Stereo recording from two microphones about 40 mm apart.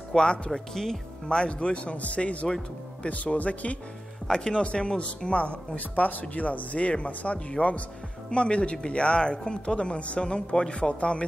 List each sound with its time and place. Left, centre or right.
0.1 s speech: centre
1.4 s speech: left
4.3 s speech: left